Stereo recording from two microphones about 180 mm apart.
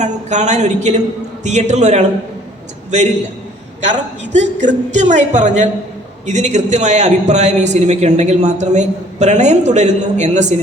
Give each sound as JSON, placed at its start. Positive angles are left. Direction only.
{"t": 0.0, "sound": "a man's voice", "side_deg": -40}
{"t": 4.3, "sound": "a man's voice", "side_deg": -40}